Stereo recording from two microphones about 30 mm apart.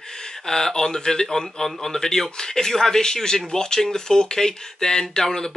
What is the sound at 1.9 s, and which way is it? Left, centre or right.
Speech, centre.